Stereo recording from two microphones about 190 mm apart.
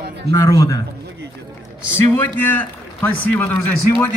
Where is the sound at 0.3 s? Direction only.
20° left (ahead or behind).